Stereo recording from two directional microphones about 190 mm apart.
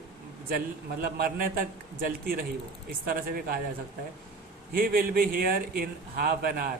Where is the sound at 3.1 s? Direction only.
50° right (ahead or behind).